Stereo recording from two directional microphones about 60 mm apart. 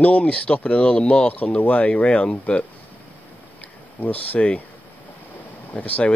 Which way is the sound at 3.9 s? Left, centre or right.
Left.